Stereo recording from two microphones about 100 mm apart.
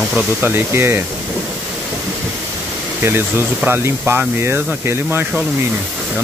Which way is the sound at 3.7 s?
20° right (ahead or behind).